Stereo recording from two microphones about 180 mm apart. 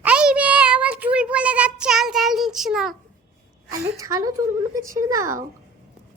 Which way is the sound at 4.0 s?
20° right (ahead or behind).